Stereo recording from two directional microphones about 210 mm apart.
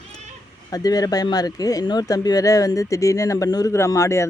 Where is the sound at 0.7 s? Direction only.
15° left (ahead or behind).